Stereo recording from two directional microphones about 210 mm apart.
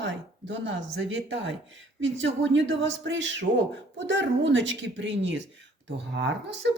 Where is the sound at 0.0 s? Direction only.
60° right (ahead or behind).